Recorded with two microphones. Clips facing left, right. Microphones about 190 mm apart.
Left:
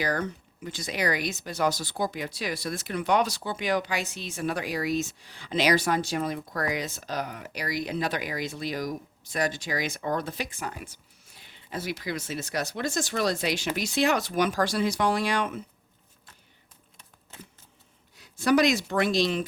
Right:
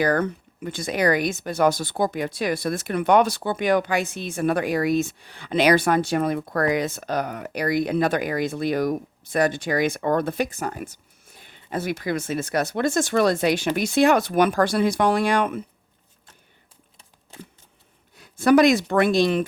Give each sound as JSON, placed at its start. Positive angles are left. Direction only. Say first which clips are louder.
{"t": 0.0, "sound": "speech", "louder": "right 7 dB", "side_deg": -55}
{"t": 18.2, "sound": "speech", "louder": "right 6 dB", "side_deg": -55}